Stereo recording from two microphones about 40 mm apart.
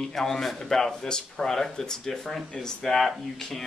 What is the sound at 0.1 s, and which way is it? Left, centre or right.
Speech, centre.